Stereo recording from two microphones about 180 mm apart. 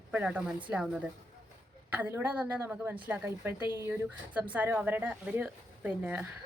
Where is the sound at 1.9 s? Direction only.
10° right (ahead or behind).